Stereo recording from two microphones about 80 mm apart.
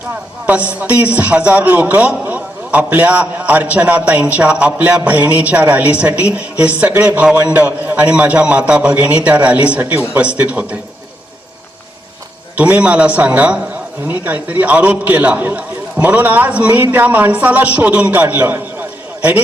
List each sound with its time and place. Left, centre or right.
0.8 s a man's voice: centre
12.5 s a man's voice: centre